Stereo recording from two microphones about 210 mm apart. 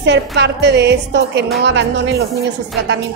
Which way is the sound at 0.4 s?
55° right (ahead or behind).